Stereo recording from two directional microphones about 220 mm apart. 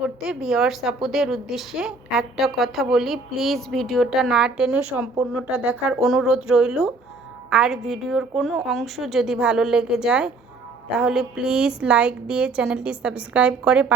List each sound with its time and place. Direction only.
0.0 s a woman's voice: centre (ahead or behind)